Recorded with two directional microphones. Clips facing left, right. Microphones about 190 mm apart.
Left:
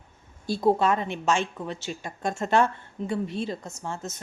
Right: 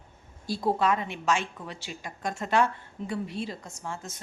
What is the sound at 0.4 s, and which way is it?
A woman's voice, 25° left (ahead or behind).